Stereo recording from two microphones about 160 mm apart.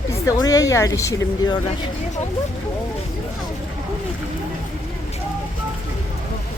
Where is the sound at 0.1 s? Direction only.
20° left (ahead or behind).